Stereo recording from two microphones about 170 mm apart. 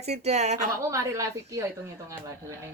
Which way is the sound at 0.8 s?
20° right (ahead or behind).